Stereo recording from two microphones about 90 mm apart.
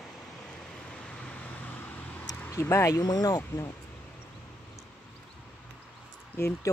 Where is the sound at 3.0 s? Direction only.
45° left (ahead or behind).